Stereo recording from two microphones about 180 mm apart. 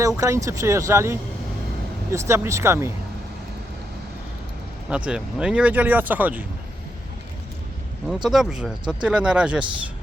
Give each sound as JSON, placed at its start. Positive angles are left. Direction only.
{"t": 0.2, "sound": "speech", "side_deg": -20}
{"t": 4.9, "sound": "speech", "side_deg": -5}
{"t": 8.0, "sound": "speech", "side_deg": -5}